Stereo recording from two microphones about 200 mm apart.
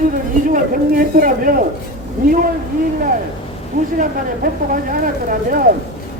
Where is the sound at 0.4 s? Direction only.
45° right (ahead or behind).